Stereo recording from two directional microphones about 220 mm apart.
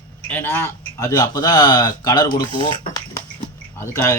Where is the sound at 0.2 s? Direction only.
5° left (ahead or behind).